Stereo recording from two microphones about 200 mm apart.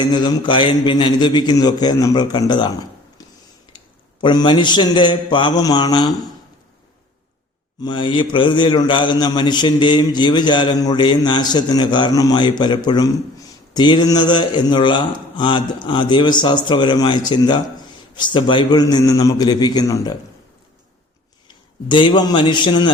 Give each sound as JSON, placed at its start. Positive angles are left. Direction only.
{"t": 0.0, "sound": "a man's voice", "side_deg": 20}
{"t": 4.2, "sound": "a man's voice", "side_deg": 20}
{"t": 7.8, "sound": "a man's voice", "side_deg": 25}
{"t": 21.4, "sound": "a man's voice", "side_deg": 25}